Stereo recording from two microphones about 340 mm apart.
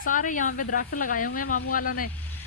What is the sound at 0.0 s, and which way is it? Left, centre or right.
Speech, left.